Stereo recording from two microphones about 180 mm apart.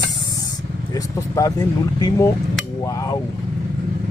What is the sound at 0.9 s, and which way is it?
Speech, 20° left (ahead or behind).